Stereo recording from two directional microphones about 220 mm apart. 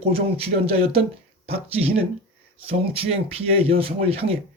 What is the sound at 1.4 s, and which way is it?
Speech, 25° right (ahead or behind).